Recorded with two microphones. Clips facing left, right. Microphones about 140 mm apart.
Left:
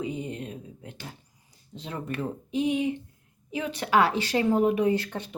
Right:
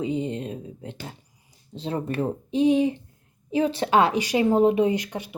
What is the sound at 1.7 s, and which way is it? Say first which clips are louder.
Speech: right 6 dB; 30° right (ahead or behind).